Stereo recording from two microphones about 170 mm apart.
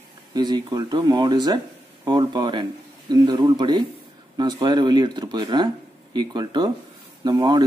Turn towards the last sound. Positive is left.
turn(degrees=-25)  # may be behind; listen again after turning